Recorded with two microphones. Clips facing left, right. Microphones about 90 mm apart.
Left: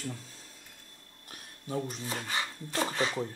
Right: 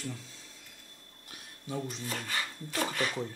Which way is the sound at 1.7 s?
45° left (ahead or behind).